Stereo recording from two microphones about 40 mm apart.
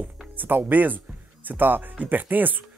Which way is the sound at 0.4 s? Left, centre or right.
Right.